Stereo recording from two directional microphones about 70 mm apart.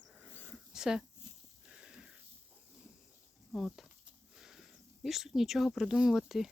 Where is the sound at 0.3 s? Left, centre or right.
Left.